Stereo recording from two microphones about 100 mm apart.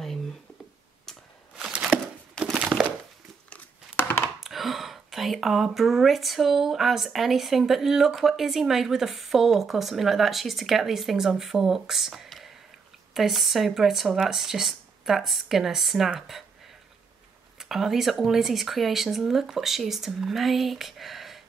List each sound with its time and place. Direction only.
1.9 s a sound: centre (ahead or behind)
3.4 s biting: 20° left (ahead or behind)
4.4 s speech: centre (ahead or behind)
17.6 s speech: 5° right (ahead or behind)